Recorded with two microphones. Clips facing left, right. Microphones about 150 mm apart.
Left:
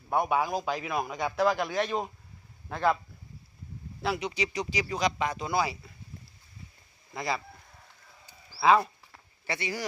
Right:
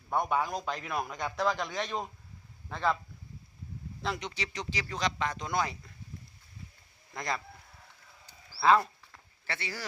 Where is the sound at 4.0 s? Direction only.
10° left (ahead or behind).